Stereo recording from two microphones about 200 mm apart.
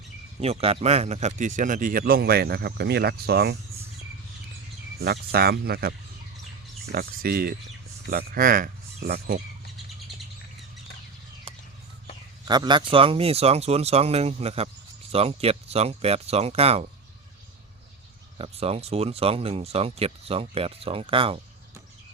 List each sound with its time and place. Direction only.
0.3 s speech: 30° right (ahead or behind); by 3.6 s 55° right (ahead or behind)
4.9 s speech: 55° right (ahead or behind)
6.9 s speech: 50° right (ahead or behind)
12.5 s speech: 20° right (ahead or behind)
18.3 s speech: 30° right (ahead or behind)